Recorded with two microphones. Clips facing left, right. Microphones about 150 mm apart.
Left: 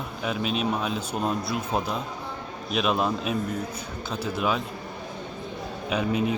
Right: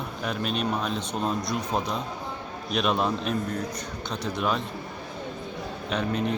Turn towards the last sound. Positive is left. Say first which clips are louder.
# left 2 dB
turn(degrees=10)  # may be behind; listen again after turning